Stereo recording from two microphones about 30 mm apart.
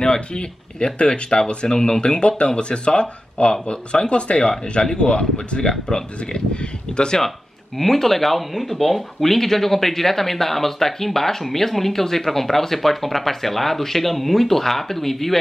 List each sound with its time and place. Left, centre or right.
0.0 s speech: left
1.7 s speech: left
2.0 s speech: left
7.2 s speech: centre